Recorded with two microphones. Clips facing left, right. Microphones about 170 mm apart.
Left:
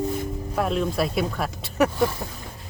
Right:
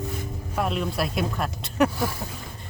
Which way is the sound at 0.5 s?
Centre (ahead or behind).